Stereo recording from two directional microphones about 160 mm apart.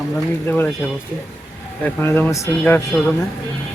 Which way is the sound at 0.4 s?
15° left (ahead or behind).